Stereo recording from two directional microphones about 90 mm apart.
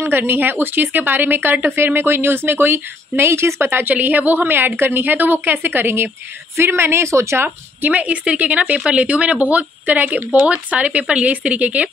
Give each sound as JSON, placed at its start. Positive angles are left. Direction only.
{"t": 0.0, "sound": "a woman's voice", "side_deg": -25}